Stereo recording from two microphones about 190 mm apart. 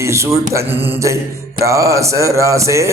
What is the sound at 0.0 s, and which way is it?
Speech, 15° right (ahead or behind).